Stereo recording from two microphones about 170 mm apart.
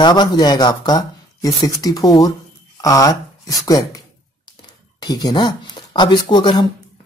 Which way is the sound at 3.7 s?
20° left (ahead or behind).